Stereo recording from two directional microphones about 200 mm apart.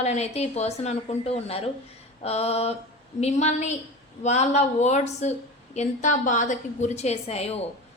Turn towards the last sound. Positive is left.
turn(degrees=30)  # may be behind; listen again after turning